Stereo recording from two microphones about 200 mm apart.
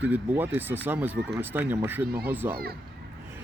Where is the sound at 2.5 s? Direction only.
50° right (ahead or behind).